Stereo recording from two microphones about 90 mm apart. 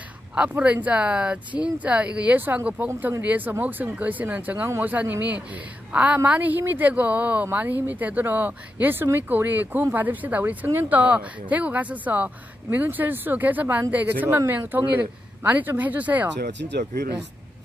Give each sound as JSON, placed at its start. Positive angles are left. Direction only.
{"t": 0.3, "sound": "speech", "side_deg": -15}